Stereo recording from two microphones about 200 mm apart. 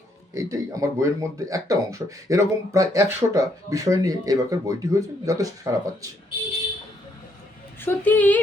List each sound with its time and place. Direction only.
0.3 s speech: 15° right (ahead or behind)
7.8 s a woman's voice: 10° left (ahead or behind)